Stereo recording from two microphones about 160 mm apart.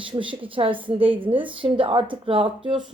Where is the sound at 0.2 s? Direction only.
35° right (ahead or behind).